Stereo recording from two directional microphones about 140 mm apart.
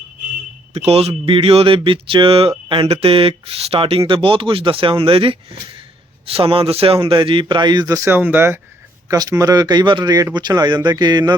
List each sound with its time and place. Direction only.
0.7 s speech: 45° right (ahead or behind); by 8.5 s 15° right (ahead or behind)
9.0 s speech: 25° right (ahead or behind)